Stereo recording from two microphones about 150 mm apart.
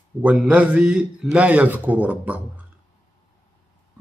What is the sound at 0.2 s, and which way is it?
Speech, 10° right (ahead or behind).